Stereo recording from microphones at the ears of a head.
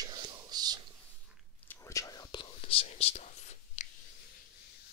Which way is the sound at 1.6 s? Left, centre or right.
Left.